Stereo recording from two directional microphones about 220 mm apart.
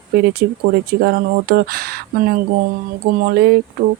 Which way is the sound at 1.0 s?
45° right (ahead or behind).